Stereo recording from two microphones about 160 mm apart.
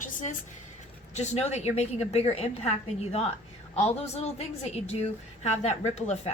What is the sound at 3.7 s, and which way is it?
A woman's voice, 40° left (ahead or behind).